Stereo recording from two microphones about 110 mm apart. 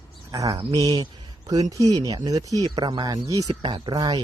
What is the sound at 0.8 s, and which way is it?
Speech, 35° right (ahead or behind).